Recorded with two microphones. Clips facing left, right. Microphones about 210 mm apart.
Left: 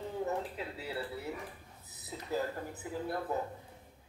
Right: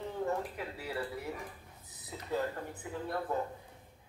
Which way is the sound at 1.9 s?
5° left (ahead or behind).